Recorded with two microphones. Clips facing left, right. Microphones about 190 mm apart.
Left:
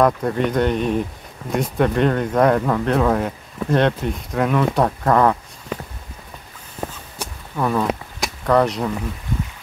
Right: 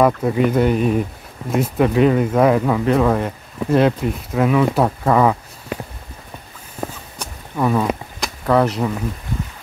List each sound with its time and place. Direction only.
0.0 s speech: 5° right (ahead or behind)
7.5 s speech: 5° right (ahead or behind)